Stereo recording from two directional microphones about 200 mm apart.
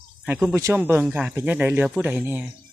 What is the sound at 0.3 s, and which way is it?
Speech, 5° right (ahead or behind).